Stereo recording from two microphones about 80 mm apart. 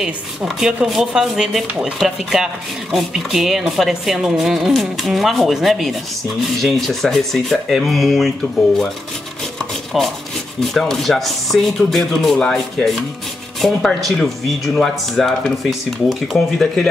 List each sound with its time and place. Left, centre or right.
0.0 s speech: centre
9.9 s speech: centre